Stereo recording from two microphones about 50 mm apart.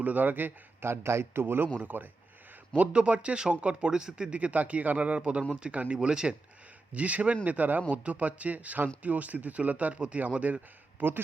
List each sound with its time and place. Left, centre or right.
0.0 s speech: right
0.9 s a man's voice: right
2.7 s speech: right